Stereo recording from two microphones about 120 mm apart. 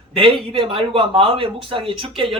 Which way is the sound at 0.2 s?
50° right (ahead or behind).